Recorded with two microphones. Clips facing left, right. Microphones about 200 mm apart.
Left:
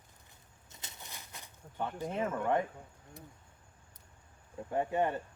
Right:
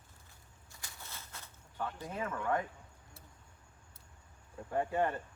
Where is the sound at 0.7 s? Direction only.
20° left (ahead or behind).